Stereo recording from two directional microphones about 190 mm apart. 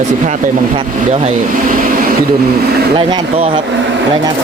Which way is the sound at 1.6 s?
50° right (ahead or behind).